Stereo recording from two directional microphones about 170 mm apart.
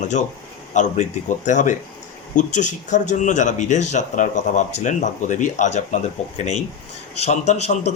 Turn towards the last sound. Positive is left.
turn(degrees=40)  # may be behind; listen again after turning